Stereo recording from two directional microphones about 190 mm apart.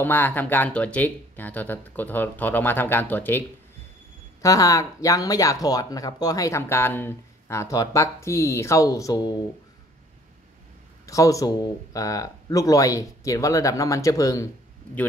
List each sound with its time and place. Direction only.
0.0 s speech: 10° left (ahead or behind)
11.1 s speech: 15° left (ahead or behind)